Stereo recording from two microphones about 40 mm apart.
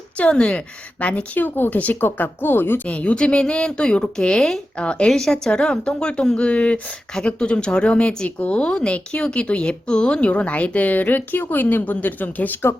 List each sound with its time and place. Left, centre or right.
0.2 s speech: left
0.9 s speech: left
2.8 s speech: left; by 4.9 s centre
4.9 s speech: left
5.1 s speech: centre; by 12.5 s left